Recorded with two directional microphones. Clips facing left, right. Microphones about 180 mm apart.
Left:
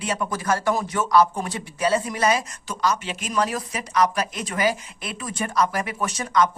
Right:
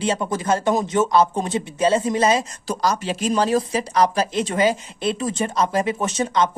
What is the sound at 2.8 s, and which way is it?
Speech, 35° right (ahead or behind).